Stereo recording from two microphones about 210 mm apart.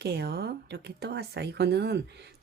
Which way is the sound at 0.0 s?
50° right (ahead or behind).